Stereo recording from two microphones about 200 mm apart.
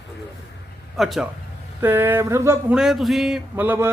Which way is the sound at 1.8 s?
10° right (ahead or behind).